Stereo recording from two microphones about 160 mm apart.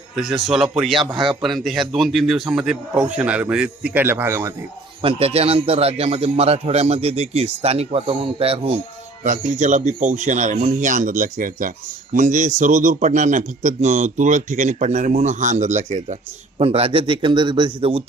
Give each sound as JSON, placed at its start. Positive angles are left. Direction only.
{"t": 0.2, "sound": "a man's voice", "side_deg": 0}
{"t": 1.1, "sound": "a man's voice", "side_deg": -30}
{"t": 1.4, "sound": "a man's voice", "side_deg": 0}
{"t": 5.0, "sound": "a man's voice", "side_deg": -35}
{"t": 9.2, "sound": "a man's voice", "side_deg": -50}
{"t": 16.6, "sound": "a man's voice", "side_deg": -40}